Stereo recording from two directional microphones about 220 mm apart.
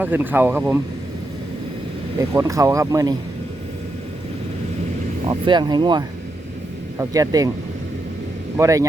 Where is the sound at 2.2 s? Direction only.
15° right (ahead or behind).